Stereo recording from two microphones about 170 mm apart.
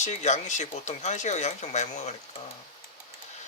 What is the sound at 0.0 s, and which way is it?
Speech, 45° left (ahead or behind).